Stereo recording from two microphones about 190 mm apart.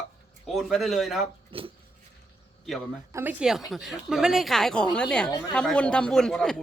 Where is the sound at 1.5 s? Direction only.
30° right (ahead or behind).